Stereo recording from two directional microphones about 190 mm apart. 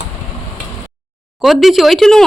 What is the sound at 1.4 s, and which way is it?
Speech, centre (ahead or behind).